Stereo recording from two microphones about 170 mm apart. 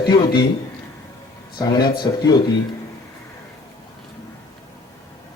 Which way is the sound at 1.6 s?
25° left (ahead or behind).